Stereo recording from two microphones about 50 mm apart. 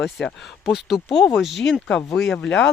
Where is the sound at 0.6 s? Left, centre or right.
Centre.